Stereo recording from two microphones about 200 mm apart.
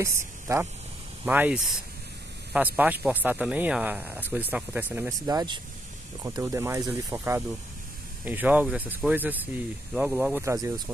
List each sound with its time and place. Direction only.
0.0 s speech: 15° right (ahead or behind)
5.3 s speech: 20° right (ahead or behind)